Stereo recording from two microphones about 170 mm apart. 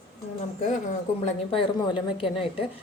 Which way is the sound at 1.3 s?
30° left (ahead or behind).